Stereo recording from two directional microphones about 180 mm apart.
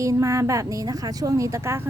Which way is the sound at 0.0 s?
15° right (ahead or behind).